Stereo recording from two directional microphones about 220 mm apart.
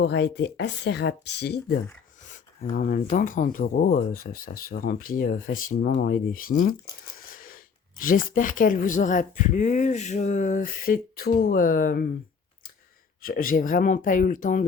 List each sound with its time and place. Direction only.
0.0 s speech: 50° left (ahead or behind)
2.2 s speech: 35° left (ahead or behind)
13.2 s speech: 40° left (ahead or behind)